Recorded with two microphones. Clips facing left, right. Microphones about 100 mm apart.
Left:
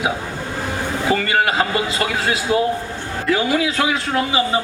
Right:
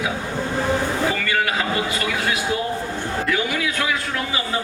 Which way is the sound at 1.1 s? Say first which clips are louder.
Left 4 dB; 25° left (ahead or behind).